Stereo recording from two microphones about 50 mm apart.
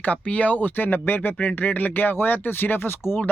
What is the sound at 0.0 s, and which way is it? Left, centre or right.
Speech, left.